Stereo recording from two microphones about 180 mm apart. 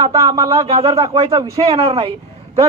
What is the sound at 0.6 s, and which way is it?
Speech, 35° right (ahead or behind).